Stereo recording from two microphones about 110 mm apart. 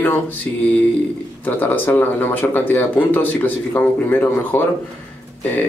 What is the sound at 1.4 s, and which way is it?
Speech, 15° left (ahead or behind).